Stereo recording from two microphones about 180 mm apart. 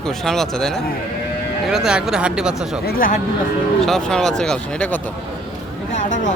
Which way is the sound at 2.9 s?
50° left (ahead or behind).